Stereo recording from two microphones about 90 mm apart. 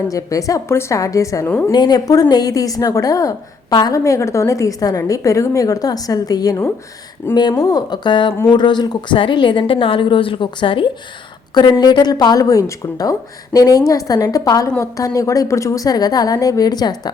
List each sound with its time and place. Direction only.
0.1 s a woman's voice: 40° left (ahead or behind)
1.7 s a woman's voice: 50° left (ahead or behind)
9.1 s a woman's voice: 65° left (ahead or behind)
11.5 s a woman's voice: 50° left (ahead or behind)